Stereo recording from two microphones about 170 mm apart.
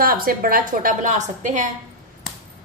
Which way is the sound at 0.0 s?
60° right (ahead or behind).